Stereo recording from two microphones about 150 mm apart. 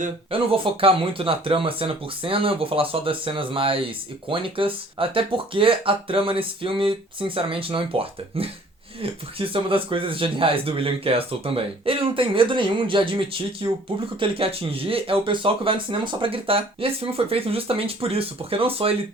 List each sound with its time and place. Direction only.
0.3 s speech: 35° right (ahead or behind)